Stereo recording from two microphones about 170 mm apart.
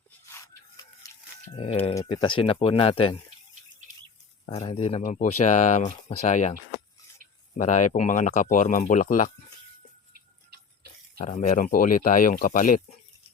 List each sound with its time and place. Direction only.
0.3 s a sound: 20° left (ahead or behind)
2.1 s speech: 30° left (ahead or behind)
4.5 s speech: 35° left (ahead or behind)
7.5 s speech: 50° left (ahead or behind)
11.2 s speech: 45° left (ahead or behind)